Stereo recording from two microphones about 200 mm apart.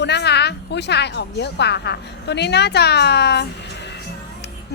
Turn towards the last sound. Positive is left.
turn(degrees=55)  # may be behind; listen again after turning